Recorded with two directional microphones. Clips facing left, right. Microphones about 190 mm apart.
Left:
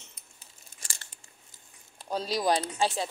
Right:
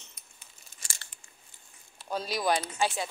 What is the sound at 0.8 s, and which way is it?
Tearing, 40° left (ahead or behind).